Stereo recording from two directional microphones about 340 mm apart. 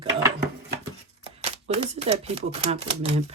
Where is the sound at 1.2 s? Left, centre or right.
Centre.